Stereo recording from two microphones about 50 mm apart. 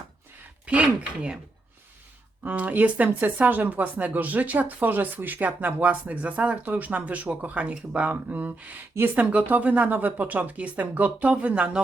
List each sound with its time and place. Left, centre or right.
0.6 s speech: right
2.4 s speech: right